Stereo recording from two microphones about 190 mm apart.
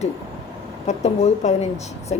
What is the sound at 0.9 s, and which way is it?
A woman's voice, 35° left (ahead or behind).